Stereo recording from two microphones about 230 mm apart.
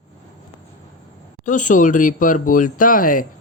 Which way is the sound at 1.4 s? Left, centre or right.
Left.